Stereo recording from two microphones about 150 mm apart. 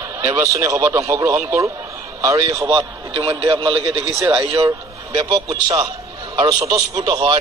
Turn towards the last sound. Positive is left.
turn(degrees=-30)  # may be behind; listen again after turning